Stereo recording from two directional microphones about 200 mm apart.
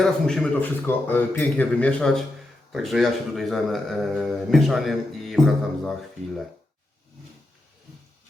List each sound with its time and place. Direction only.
0.0 s a man's voice: 5° left (ahead or behind)